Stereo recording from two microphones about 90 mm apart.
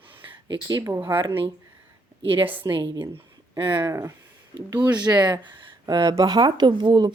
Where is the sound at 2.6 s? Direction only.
60° right (ahead or behind).